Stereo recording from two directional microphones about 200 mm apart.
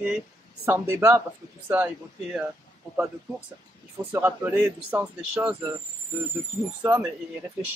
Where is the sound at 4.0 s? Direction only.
10° right (ahead or behind).